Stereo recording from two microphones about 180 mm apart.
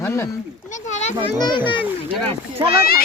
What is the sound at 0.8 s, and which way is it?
Speech, 40° left (ahead or behind).